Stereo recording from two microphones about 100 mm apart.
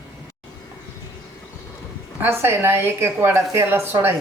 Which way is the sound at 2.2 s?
20° right (ahead or behind).